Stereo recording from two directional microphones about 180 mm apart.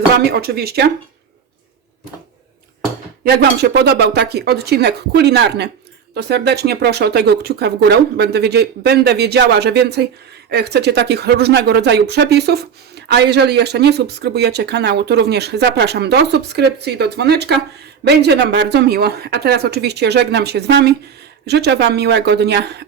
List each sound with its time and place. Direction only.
0.2 s speech: 60° right (ahead or behind)
3.2 s a woman's voice: 60° right (ahead or behind)